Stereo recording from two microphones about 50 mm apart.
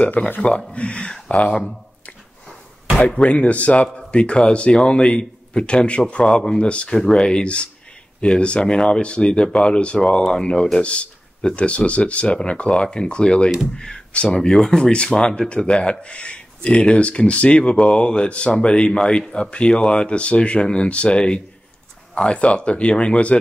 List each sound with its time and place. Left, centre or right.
0.1 s speech: left
3.3 s speech: left